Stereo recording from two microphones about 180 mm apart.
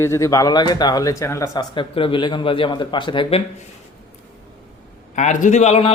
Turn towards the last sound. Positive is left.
turn(degrees=35)  # may be behind; listen again after turning